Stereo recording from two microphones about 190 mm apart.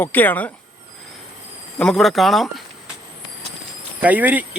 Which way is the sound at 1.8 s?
Centre (ahead or behind).